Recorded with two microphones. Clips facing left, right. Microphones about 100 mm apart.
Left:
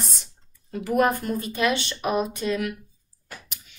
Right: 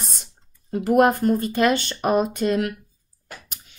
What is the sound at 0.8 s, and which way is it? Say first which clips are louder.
Speech: right 5 dB; 50° right (ahead or behind).